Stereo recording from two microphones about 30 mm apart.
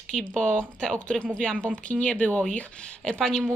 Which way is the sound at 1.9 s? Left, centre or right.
Left.